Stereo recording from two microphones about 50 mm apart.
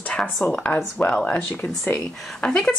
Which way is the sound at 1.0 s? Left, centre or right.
Left.